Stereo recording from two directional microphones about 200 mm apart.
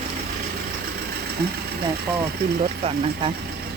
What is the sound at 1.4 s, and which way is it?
Speech, 50° right (ahead or behind).